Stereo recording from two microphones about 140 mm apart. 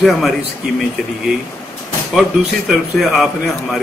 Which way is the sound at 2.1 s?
Centre (ahead or behind).